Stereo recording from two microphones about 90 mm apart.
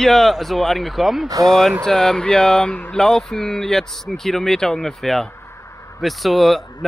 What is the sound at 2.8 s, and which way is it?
Speech, 5° left (ahead or behind).